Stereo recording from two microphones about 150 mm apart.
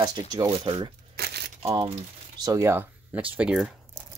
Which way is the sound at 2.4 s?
20° right (ahead or behind).